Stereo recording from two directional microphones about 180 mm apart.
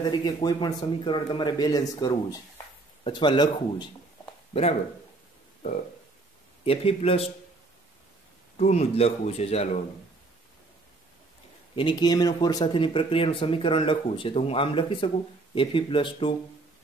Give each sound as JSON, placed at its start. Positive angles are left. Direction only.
{"t": 0.0, "sound": "speech", "side_deg": 20}
{"t": 6.6, "sound": "speech", "side_deg": 30}
{"t": 8.5, "sound": "speech", "side_deg": 35}
{"t": 11.7, "sound": "speech", "side_deg": 25}